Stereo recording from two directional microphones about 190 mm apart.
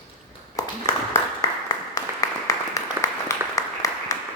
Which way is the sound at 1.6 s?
20° left (ahead or behind).